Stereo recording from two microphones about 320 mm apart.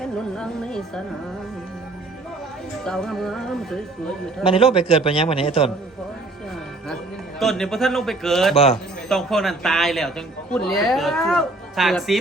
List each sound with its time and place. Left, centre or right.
0.0 s a man's voice: centre
2.8 s a man's voice: centre
4.4 s a man's voice: centre
6.8 s speech: centre
8.5 s a man's voice: centre
9.0 s a man's voice: centre